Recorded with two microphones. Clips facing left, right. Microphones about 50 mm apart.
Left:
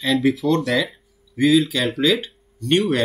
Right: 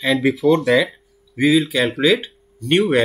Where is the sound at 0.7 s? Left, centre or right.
Right.